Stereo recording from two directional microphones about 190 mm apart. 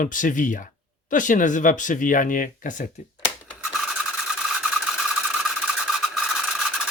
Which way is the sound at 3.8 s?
5° right (ahead or behind).